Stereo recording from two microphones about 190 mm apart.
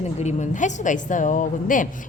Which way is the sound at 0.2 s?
35° left (ahead or behind).